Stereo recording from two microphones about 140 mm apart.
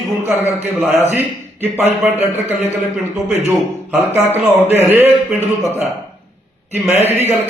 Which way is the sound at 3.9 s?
15° right (ahead or behind).